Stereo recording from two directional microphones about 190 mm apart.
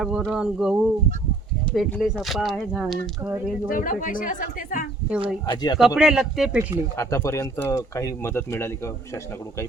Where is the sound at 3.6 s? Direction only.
45° left (ahead or behind).